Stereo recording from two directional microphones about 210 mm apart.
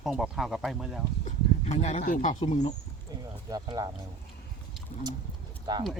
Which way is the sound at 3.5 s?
20° right (ahead or behind).